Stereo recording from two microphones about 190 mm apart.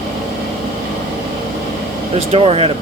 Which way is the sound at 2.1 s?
30° right (ahead or behind).